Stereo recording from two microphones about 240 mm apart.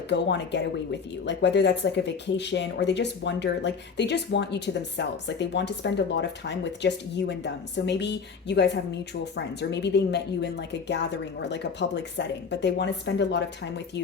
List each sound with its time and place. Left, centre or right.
0.1 s speech: left